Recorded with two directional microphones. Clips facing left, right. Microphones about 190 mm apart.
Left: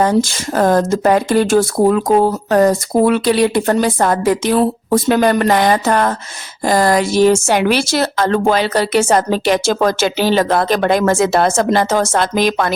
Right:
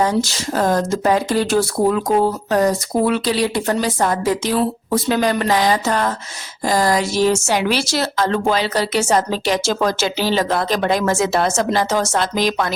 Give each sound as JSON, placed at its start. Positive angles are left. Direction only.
{"t": 0.0, "sound": "speech", "side_deg": 55}